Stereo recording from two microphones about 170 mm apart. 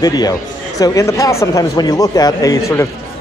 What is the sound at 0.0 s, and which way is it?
A man's voice, 20° left (ahead or behind).